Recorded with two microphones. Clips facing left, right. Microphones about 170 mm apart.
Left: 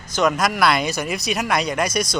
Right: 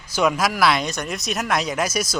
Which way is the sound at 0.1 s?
5° right (ahead or behind).